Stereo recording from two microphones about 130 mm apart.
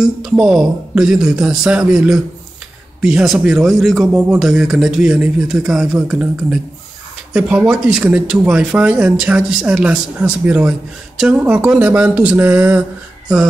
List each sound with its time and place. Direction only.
0.0 s speech: 5° right (ahead or behind)